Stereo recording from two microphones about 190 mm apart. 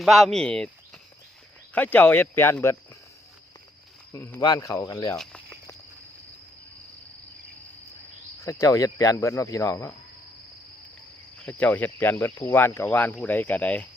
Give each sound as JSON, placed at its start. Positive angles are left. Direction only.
{"t": 0.0, "sound": "speech", "side_deg": 0}
{"t": 1.7, "sound": "speech", "side_deg": 10}
{"t": 4.1, "sound": "speech", "side_deg": 15}
{"t": 5.1, "sound": "speech", "side_deg": 5}
{"t": 8.4, "sound": "speech", "side_deg": 15}
{"t": 11.4, "sound": "speech", "side_deg": 10}